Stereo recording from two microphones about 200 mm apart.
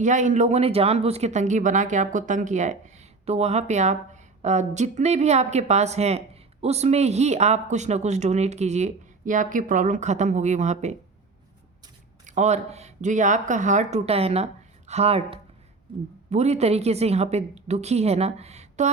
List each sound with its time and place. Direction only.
0.0 s speech: 40° right (ahead or behind)
12.2 s speech: 35° right (ahead or behind)